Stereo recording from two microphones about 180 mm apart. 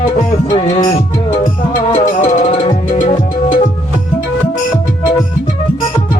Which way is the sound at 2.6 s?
30° left (ahead or behind).